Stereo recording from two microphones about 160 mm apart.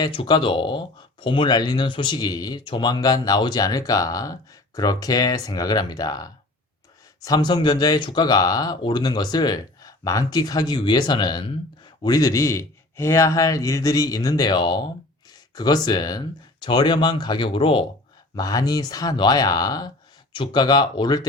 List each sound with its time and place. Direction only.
0.0 s speech: 30° left (ahead or behind)